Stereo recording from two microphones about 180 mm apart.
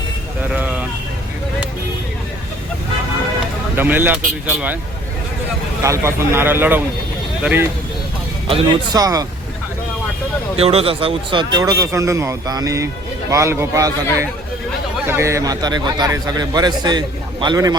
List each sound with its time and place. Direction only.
0.5 s vehicle: 10° right (ahead or behind)
3.8 s speech: 10° right (ahead or behind)
5.8 s speech: 15° right (ahead or behind)
8.4 s speech: 30° right (ahead or behind)
10.6 s speech: 35° right (ahead or behind)